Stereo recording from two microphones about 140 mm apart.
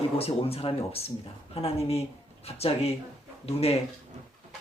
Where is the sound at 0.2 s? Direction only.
45° left (ahead or behind).